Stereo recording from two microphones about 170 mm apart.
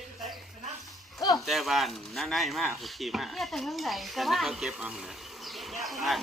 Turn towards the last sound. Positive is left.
turn(degrees=0)  # may be behind; listen again after turning